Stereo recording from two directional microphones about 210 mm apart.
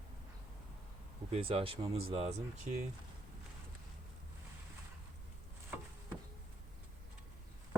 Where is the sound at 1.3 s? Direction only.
25° right (ahead or behind).